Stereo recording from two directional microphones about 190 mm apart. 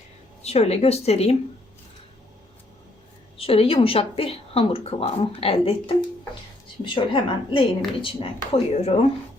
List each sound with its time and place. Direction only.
0.4 s speech: 35° left (ahead or behind)
3.3 s speech: 30° left (ahead or behind)